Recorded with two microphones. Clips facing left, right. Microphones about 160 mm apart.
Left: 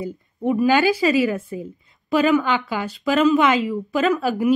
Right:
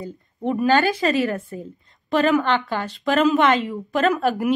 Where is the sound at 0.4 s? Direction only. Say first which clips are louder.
Left 1 dB; 10° left (ahead or behind).